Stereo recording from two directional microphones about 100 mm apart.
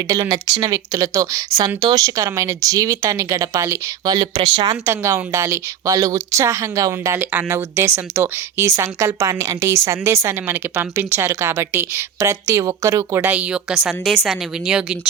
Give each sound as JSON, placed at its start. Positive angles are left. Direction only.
{"t": 0.1, "sound": "speech", "side_deg": -35}
{"t": 4.1, "sound": "speech", "side_deg": -50}
{"t": 4.7, "sound": "speech", "side_deg": -30}
{"t": 7.2, "sound": "speech", "side_deg": -20}
{"t": 13.2, "sound": "a woman's voice", "side_deg": -15}